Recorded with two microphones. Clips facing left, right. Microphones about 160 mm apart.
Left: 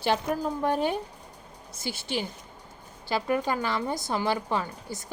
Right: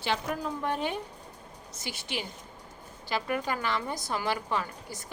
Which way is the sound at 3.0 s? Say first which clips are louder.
Left 4 dB; 30° left (ahead or behind).